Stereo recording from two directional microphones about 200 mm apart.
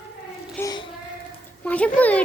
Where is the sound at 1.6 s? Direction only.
5° left (ahead or behind).